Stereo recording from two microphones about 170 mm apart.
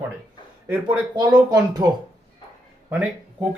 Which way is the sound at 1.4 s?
25° right (ahead or behind).